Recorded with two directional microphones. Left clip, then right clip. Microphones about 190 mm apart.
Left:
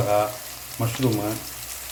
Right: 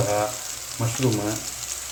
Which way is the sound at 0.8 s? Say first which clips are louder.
Left 2 dB; 10° left (ahead or behind).